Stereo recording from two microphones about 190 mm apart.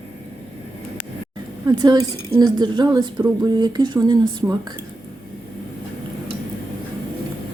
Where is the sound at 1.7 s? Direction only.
20° right (ahead or behind).